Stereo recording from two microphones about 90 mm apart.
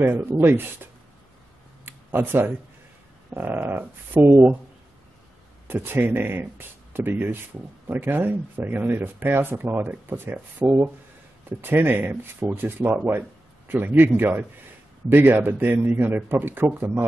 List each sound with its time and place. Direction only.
0.0 s speech: 25° right (ahead or behind)
1.9 s a sound: 20° right (ahead or behind)
3.3 s speech: 25° right (ahead or behind)
5.7 s speech: 25° right (ahead or behind)
11.4 s speech: 25° right (ahead or behind)